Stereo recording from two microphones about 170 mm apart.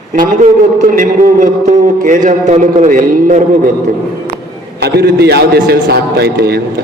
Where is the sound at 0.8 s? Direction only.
50° right (ahead or behind).